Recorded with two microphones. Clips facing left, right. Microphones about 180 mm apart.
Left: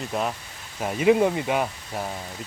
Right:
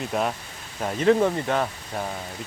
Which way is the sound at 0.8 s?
5° left (ahead or behind).